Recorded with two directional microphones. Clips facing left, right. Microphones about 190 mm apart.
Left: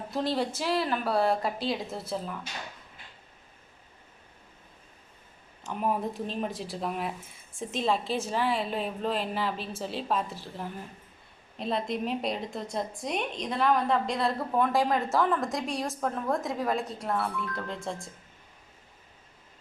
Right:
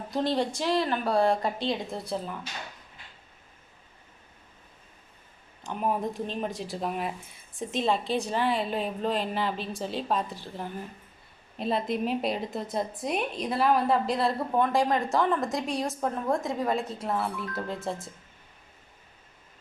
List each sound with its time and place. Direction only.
0.1 s a woman's voice: centre (ahead or behind)
5.6 s a woman's voice: centre (ahead or behind)